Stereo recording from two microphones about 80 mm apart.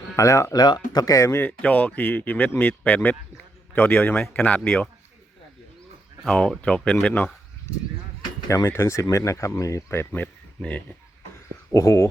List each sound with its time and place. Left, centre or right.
0.2 s speech: left
0.5 s speech: left
1.5 s speech: centre
6.2 s speech: centre
8.4 s speech: left
10.6 s speech: centre
11.7 s speech: left